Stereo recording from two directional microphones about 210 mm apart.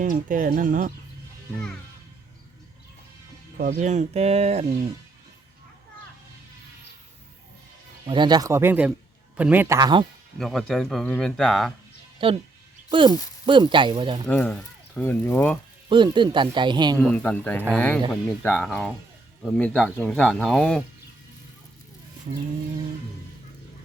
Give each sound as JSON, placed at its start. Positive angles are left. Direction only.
{"t": 0.0, "sound": "speech", "side_deg": -40}
{"t": 3.6, "sound": "speech", "side_deg": -40}
{"t": 8.0, "sound": "speech", "side_deg": -20}
{"t": 10.3, "sound": "speech", "side_deg": 0}
{"t": 12.2, "sound": "speech", "side_deg": -25}
{"t": 14.3, "sound": "speech", "side_deg": 5}
{"t": 15.9, "sound": "speech", "side_deg": -20}
{"t": 17.0, "sound": "speech", "side_deg": 5}